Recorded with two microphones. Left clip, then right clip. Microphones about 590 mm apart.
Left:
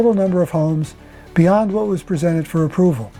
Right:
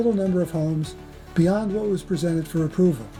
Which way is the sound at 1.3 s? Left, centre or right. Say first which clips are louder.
Left 8 dB; left.